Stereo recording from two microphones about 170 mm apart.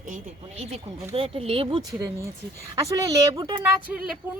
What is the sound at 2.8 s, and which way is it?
Speech, 20° right (ahead or behind).